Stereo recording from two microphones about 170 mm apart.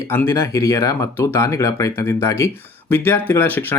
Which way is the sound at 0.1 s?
15° left (ahead or behind).